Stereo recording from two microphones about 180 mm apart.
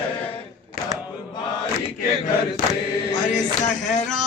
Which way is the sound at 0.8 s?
50° left (ahead or behind).